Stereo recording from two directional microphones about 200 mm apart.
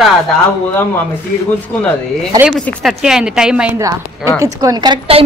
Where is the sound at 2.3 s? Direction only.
5° right (ahead or behind).